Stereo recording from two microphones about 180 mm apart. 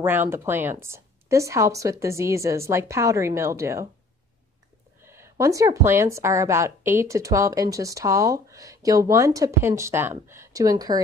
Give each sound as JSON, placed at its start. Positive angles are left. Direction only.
{"t": 0.0, "sound": "a woman's voice", "side_deg": -10}
{"t": 5.0, "sound": "a woman's voice", "side_deg": -15}